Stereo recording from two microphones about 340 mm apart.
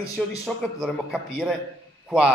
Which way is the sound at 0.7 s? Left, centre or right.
Centre.